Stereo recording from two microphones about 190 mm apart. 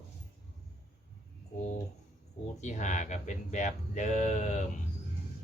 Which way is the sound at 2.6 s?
40° left (ahead or behind).